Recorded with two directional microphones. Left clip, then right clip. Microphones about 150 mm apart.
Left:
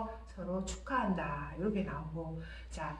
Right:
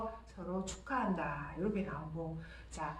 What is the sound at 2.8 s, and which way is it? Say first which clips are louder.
Speech: even; 10° right (ahead or behind).